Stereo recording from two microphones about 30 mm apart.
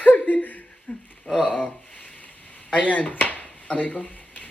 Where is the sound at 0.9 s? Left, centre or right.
Left.